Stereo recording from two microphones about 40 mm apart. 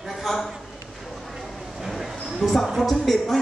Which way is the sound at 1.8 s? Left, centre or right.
Centre.